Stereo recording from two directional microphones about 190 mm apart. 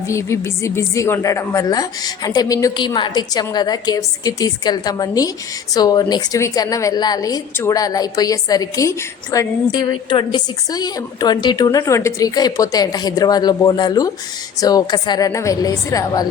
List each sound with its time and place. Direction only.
0.1 s a woman's voice: 15° left (ahead or behind)